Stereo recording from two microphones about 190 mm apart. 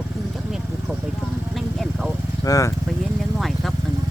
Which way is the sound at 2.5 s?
15° left (ahead or behind).